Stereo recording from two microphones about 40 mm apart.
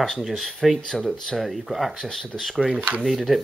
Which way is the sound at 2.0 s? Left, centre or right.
Centre.